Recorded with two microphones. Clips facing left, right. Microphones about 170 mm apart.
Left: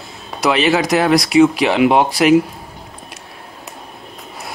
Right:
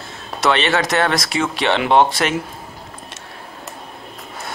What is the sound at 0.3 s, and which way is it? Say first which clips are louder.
Speech: left 3 dB; centre (ahead or behind).